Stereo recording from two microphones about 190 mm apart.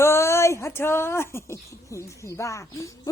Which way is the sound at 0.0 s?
15° left (ahead or behind).